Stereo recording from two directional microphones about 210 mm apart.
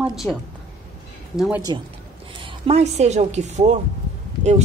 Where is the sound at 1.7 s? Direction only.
20° right (ahead or behind).